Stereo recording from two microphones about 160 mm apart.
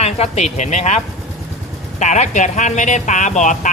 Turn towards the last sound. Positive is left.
turn(degrees=50)  # may be behind; listen again after turning